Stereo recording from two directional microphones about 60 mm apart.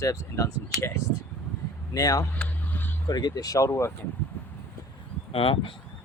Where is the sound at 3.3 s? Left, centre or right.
Left.